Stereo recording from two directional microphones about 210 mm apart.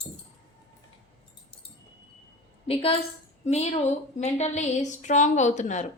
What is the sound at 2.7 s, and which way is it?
Speech, 25° left (ahead or behind).